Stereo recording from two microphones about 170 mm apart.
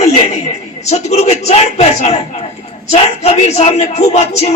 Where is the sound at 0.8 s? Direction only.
40° left (ahead or behind).